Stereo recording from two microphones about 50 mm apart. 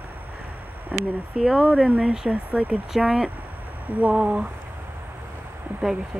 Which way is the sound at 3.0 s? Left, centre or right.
Centre.